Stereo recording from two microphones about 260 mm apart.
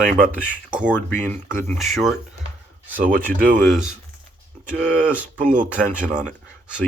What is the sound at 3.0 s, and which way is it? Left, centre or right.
Speech, right.